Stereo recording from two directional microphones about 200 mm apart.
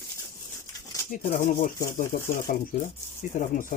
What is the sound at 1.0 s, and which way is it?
Speech, 45° left (ahead or behind).